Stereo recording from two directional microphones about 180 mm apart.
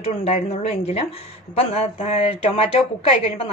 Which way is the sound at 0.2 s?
35° left (ahead or behind).